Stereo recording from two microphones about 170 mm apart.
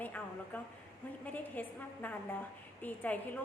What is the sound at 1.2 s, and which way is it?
A woman's voice, 10° left (ahead or behind).